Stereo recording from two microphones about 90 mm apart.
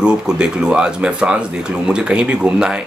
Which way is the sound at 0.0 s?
10° right (ahead or behind).